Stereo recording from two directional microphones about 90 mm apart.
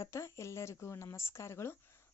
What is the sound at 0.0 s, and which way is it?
A woman's voice, 35° left (ahead or behind).